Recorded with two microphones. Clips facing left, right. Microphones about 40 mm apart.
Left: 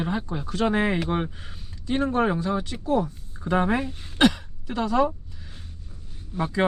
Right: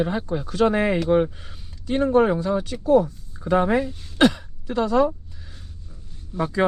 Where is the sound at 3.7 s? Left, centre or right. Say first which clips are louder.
Right 4 dB; left.